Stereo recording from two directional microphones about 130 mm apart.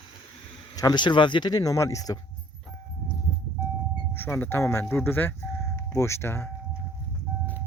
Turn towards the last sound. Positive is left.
turn(degrees=20)  # may be behind; listen again after turning